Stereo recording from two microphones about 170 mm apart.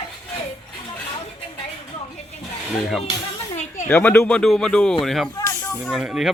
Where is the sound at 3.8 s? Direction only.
10° left (ahead or behind).